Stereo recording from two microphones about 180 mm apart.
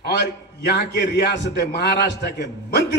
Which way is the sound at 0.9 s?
70° left (ahead or behind).